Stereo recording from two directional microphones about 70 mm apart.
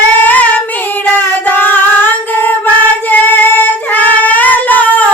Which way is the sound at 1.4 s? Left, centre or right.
Left.